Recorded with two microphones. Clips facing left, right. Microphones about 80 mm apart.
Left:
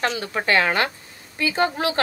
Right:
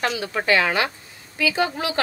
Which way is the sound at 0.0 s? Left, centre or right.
Left.